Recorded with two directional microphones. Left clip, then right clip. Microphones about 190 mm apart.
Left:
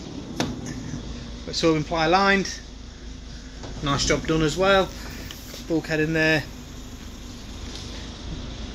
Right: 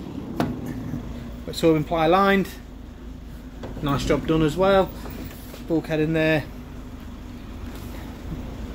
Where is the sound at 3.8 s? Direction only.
Centre (ahead or behind).